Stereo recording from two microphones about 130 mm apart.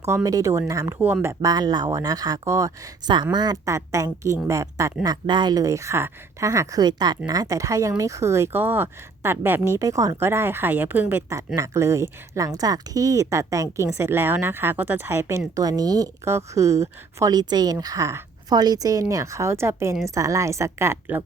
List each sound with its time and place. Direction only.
0.0 s speech: 25° right (ahead or behind)
5.0 s speech: 35° right (ahead or behind); by 21.2 s 20° right (ahead or behind)